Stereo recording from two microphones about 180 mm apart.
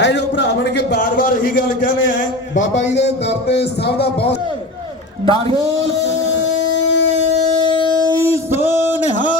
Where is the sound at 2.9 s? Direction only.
75° left (ahead or behind).